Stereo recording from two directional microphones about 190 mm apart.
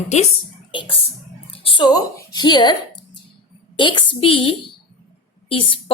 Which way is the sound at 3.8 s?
25° left (ahead or behind).